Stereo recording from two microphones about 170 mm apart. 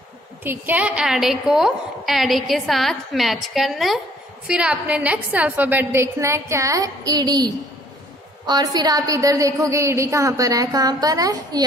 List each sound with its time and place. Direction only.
0.4 s a woman's voice: 10° right (ahead or behind)